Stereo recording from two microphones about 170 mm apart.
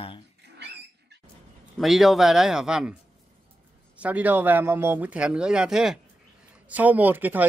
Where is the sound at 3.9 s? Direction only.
10° right (ahead or behind).